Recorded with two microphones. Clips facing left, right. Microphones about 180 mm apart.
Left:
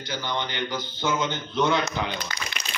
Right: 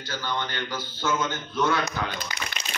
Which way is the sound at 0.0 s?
15° left (ahead or behind).